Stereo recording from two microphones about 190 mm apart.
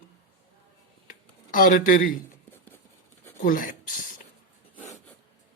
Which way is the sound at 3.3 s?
45° left (ahead or behind).